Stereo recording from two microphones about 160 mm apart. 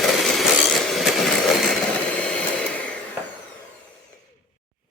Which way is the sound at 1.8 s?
10° left (ahead or behind).